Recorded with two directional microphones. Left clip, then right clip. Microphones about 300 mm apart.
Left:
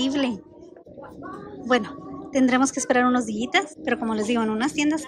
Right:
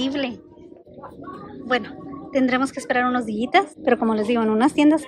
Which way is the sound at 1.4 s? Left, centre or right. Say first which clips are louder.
Left 1 dB; centre.